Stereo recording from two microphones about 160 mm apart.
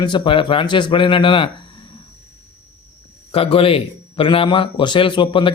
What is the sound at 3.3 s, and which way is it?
A man's voice, 35° left (ahead or behind).